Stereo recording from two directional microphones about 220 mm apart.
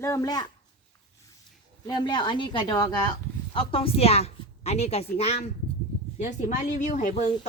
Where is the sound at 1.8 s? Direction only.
20° left (ahead or behind).